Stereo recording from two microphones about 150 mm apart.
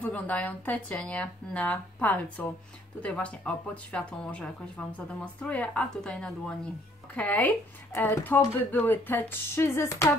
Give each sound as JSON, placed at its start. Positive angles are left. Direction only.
{"t": 0.0, "sound": "speech", "side_deg": 10}